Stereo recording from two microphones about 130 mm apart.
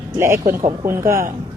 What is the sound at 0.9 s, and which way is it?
Speech, 20° right (ahead or behind).